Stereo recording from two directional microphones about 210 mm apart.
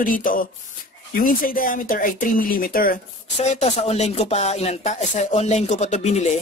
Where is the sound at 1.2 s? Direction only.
40° left (ahead or behind).